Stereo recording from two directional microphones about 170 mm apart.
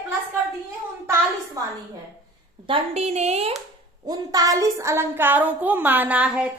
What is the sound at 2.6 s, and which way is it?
Speech, 35° right (ahead or behind).